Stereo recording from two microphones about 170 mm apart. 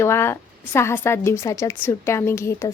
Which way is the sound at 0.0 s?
15° left (ahead or behind).